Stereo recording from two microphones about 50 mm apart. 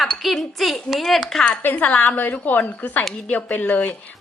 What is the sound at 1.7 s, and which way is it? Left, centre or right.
A woman's voice, left.